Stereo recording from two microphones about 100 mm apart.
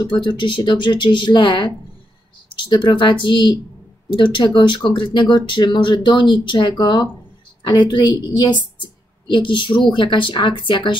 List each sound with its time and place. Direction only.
0.0 s a woman's voice: 50° left (ahead or behind)